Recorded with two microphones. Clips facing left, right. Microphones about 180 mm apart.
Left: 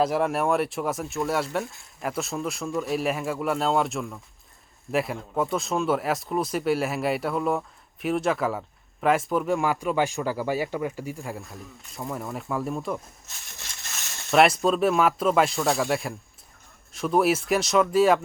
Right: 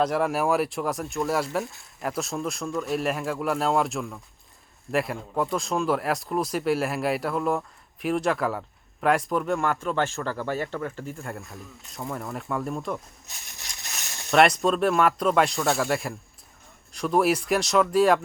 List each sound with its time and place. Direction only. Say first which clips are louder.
0.0 s speech: even; centre (ahead or behind)
9.7 s speech: left 2 dB; 15° left (ahead or behind)
13.6 s a sound: right 1 dB; 15° right (ahead or behind)
14.3 s speech: even; centre (ahead or behind)